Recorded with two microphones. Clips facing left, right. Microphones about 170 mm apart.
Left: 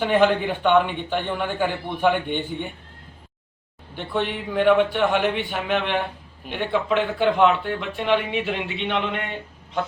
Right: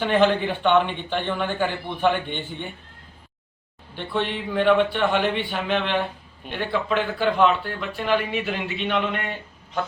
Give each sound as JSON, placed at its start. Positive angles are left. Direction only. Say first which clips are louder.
{"t": 0.0, "sound": "a man's voice", "louder": "left 1 dB", "side_deg": 10}
{"t": 3.9, "sound": "a man's voice", "louder": "left 1 dB", "side_deg": 10}